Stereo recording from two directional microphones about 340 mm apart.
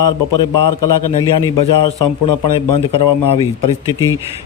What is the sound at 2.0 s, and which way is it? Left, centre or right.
Speech, left.